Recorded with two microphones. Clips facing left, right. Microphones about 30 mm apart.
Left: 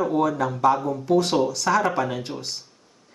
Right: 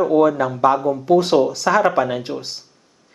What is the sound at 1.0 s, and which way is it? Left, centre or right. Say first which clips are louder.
Speech: right 5 dB; right.